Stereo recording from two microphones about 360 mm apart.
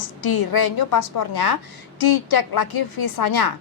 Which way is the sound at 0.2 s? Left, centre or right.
Left.